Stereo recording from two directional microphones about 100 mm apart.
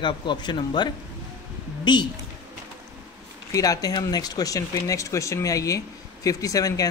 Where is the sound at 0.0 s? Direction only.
50° left (ahead or behind).